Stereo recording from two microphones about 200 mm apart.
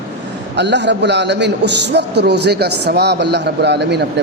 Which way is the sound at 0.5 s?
60° right (ahead or behind).